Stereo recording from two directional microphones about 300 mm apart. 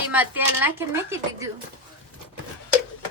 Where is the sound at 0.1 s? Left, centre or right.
Centre.